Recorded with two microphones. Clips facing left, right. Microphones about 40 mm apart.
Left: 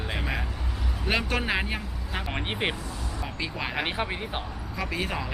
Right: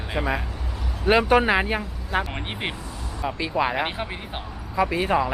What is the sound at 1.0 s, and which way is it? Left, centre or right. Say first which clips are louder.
Speech: right 9 dB; centre.